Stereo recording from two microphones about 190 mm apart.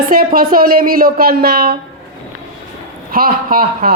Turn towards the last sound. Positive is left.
turn(degrees=-50)  # may be behind; listen again after turning